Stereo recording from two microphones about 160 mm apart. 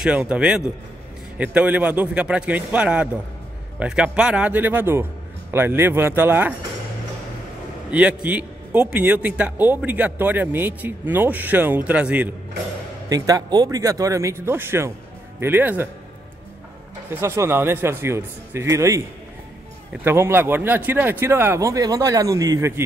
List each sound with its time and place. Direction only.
0.3 s a man's voice: 5° right (ahead or behind)
7.9 s a man's voice: 10° right (ahead or behind)
13.1 s a man's voice: 20° right (ahead or behind)
17.2 s a man's voice: 15° right (ahead or behind)